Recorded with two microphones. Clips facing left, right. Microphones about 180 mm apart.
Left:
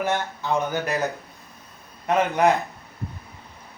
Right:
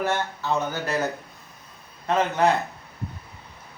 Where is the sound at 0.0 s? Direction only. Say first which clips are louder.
Left 1 dB; 15° left (ahead or behind).